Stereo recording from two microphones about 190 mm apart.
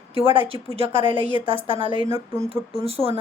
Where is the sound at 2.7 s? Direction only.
30° right (ahead or behind).